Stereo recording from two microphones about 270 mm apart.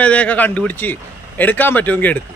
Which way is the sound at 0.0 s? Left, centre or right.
Centre.